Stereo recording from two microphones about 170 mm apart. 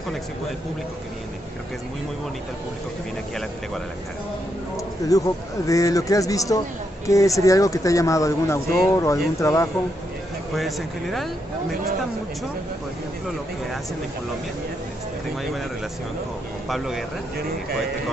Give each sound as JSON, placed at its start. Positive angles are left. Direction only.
{"t": 4.7, "sound": "speech", "side_deg": 20}
{"t": 10.5, "sound": "speech", "side_deg": 0}
{"t": 16.6, "sound": "speech", "side_deg": 0}